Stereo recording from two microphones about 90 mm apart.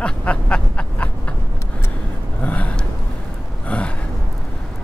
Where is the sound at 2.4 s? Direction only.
15° left (ahead or behind).